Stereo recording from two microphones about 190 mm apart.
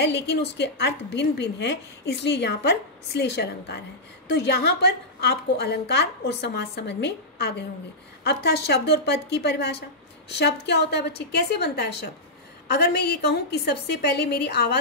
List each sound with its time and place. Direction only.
0.0 s a woman's voice: 60° left (ahead or behind)